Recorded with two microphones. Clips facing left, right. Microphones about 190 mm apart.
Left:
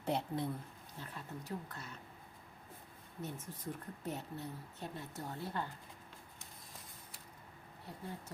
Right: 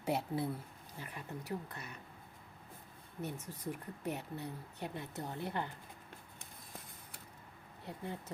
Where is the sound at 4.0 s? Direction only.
15° right (ahead or behind).